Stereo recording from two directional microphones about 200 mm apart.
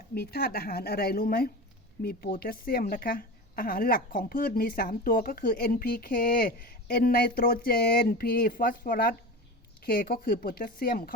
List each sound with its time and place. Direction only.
0.1 s a woman's voice: 50° left (ahead or behind)